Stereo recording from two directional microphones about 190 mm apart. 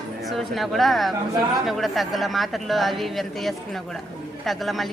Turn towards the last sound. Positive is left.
turn(degrees=0)  # may be behind; listen again after turning